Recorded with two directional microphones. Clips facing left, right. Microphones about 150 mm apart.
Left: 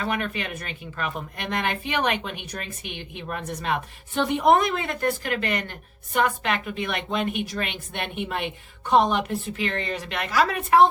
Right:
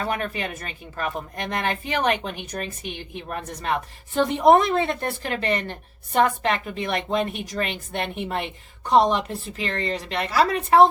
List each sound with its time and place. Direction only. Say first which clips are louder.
0.0 s a woman's voice: right 1 dB; 35° right (ahead or behind)
4.1 s a woman's voice: right 3 dB; 35° right (ahead or behind)